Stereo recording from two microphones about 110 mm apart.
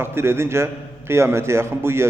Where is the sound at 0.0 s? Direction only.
20° right (ahead or behind).